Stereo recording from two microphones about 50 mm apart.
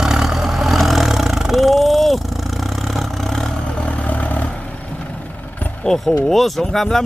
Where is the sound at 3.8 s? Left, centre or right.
Left.